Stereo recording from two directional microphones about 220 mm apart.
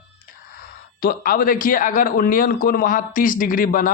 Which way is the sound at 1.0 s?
40° left (ahead or behind).